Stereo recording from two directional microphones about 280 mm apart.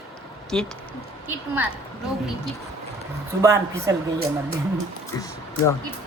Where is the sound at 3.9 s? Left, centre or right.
Centre.